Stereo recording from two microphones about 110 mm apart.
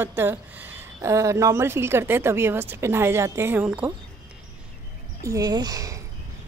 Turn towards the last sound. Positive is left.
turn(degrees=-30)  # may be behind; listen again after turning